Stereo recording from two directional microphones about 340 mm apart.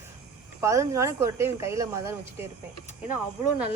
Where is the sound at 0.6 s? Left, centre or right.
Centre.